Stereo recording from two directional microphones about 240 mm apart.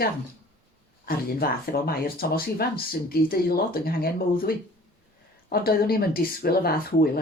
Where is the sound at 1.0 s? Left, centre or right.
Left.